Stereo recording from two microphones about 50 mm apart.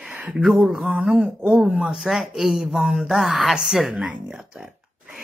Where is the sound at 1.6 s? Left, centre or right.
Centre.